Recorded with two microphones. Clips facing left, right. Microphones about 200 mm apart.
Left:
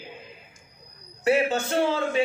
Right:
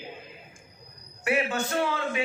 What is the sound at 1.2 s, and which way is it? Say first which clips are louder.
Speech: left 5 dB; 30° left (ahead or behind).